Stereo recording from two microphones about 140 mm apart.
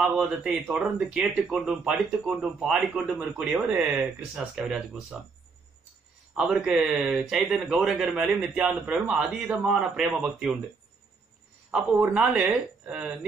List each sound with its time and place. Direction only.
0.0 s speech: 5° right (ahead or behind)
6.3 s speech: 5° right (ahead or behind)
11.7 s speech: 5° right (ahead or behind)